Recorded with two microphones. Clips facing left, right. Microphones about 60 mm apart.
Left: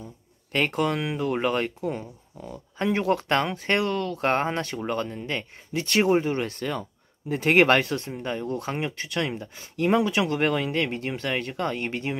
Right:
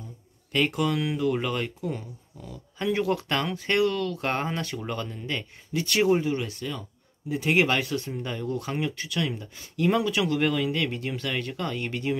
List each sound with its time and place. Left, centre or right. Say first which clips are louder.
0.5 s speech: left 1 dB; left
7.9 s speech: left 2 dB; left